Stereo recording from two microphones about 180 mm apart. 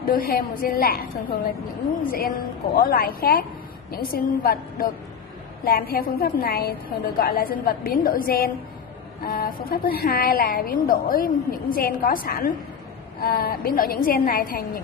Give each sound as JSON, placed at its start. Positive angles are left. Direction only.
{"t": 0.0, "sound": "a woman's voice", "side_deg": 55}
{"t": 2.0, "sound": "a woman's voice", "side_deg": 55}